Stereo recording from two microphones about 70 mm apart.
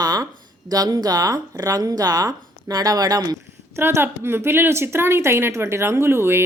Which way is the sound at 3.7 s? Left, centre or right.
Right.